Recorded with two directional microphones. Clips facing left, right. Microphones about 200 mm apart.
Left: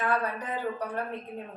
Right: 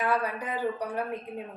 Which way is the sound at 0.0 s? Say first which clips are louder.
Right 1 dB; 10° right (ahead or behind).